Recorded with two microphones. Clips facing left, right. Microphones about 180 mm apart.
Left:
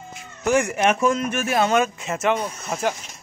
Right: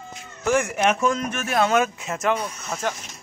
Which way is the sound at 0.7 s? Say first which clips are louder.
Left 2 dB; 5° left (ahead or behind).